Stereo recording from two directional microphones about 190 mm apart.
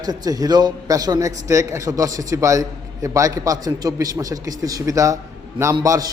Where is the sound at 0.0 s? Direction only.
20° right (ahead or behind).